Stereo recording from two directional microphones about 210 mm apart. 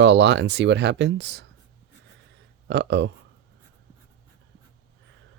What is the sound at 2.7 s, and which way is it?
Speech, 55° right (ahead or behind).